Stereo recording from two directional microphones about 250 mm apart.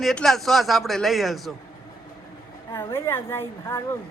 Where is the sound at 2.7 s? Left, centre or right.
Centre.